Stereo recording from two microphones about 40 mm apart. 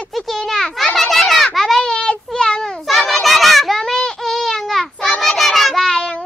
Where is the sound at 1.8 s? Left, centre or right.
Centre.